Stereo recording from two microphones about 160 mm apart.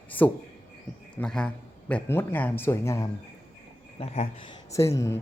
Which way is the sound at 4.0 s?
40° left (ahead or behind).